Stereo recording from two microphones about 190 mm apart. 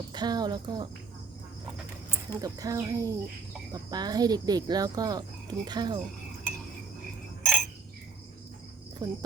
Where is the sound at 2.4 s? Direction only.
20° right (ahead or behind).